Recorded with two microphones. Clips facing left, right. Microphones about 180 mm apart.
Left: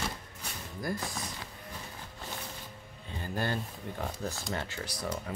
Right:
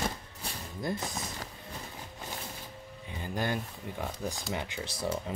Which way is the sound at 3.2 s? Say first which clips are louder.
Right 1 dB; 15° right (ahead or behind).